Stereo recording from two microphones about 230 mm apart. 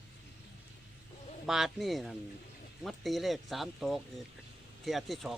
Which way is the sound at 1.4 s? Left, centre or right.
Centre.